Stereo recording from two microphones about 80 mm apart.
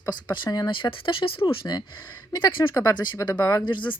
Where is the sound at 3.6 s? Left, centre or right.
Left.